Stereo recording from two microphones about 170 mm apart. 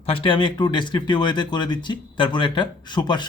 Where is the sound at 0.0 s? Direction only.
30° left (ahead or behind).